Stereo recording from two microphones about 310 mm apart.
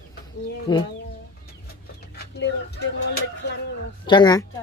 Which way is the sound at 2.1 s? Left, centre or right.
Left.